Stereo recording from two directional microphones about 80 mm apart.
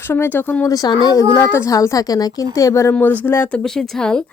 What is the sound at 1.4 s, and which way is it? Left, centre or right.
A woman's voice, left.